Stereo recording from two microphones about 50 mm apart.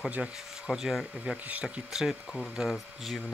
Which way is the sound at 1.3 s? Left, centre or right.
Right.